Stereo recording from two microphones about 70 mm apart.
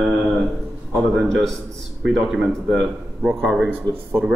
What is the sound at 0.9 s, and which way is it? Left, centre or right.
Speech, centre.